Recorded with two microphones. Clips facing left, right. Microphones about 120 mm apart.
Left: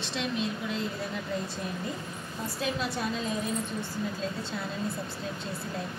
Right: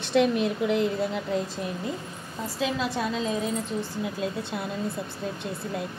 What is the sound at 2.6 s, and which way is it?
Speech, 90° right.